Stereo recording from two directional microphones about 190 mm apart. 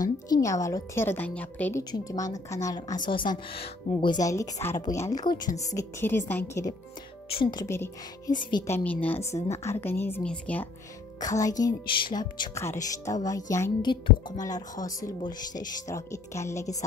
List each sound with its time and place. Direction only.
0.0 s speech: 20° left (ahead or behind)
5.8 s speech: 15° left (ahead or behind)
7.2 s speech: 30° left (ahead or behind)
7.6 s speech: 15° left (ahead or behind)
11.1 s speech: 20° left (ahead or behind)